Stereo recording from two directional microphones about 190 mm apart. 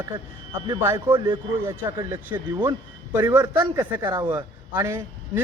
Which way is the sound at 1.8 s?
10° right (ahead or behind).